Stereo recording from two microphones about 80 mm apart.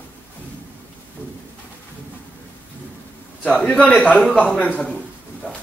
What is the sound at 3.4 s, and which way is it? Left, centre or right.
A man's voice, centre.